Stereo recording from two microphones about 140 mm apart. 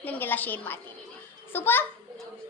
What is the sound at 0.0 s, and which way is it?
A woman's voice, 15° left (ahead or behind).